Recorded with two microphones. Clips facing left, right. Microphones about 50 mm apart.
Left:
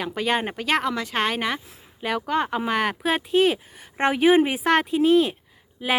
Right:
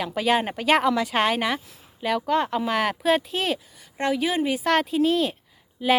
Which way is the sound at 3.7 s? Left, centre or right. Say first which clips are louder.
Left 2 dB; left.